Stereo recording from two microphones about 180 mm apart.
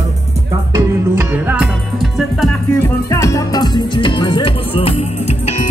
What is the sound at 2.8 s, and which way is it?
Music, 15° left (ahead or behind).